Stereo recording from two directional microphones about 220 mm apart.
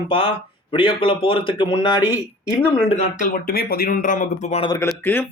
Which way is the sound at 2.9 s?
35° left (ahead or behind).